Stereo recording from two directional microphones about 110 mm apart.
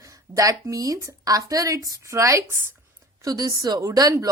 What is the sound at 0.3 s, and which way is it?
A woman's voice, 30° right (ahead or behind).